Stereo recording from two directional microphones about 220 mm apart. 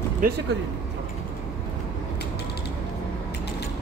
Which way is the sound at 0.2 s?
40° right (ahead or behind).